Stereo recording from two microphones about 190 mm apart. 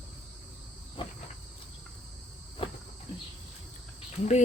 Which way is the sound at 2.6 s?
30° left (ahead or behind).